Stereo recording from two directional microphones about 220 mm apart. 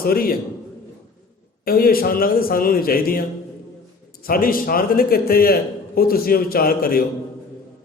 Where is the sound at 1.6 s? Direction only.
40° left (ahead or behind).